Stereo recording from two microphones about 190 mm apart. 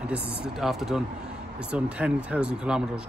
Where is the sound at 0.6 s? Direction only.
Centre (ahead or behind).